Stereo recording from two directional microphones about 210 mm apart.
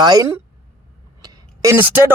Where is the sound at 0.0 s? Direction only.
15° right (ahead or behind).